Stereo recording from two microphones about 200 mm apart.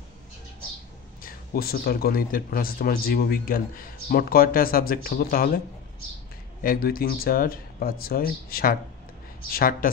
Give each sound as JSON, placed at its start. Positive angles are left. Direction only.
{"t": 1.2, "sound": "speech", "side_deg": 50}
{"t": 6.6, "sound": "speech", "side_deg": 45}